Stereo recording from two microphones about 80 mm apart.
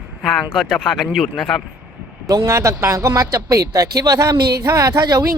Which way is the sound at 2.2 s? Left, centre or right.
Right.